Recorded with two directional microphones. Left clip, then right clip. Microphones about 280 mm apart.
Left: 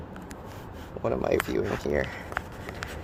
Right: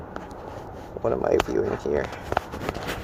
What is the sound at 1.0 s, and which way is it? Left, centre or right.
Speech, left.